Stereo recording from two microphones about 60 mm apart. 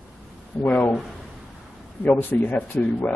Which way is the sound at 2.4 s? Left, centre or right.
Left.